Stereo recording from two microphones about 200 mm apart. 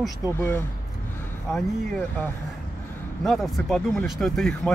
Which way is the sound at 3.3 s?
Centre (ahead or behind).